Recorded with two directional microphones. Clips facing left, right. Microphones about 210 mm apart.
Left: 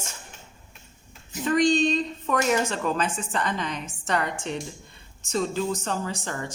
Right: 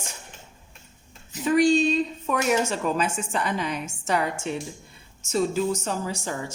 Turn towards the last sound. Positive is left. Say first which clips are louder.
# right 1 dB
turn(degrees=-5)  # may be behind; listen again after turning